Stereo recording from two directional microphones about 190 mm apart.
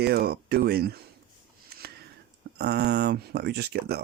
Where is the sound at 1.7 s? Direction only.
55° right (ahead or behind).